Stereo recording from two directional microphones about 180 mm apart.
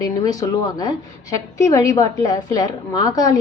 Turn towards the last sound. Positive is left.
turn(degrees=20)  # may be behind; listen again after turning